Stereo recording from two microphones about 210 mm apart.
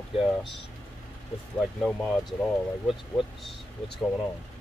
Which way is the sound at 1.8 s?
Centre (ahead or behind).